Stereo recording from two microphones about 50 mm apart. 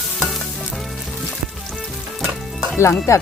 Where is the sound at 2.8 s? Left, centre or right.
Left.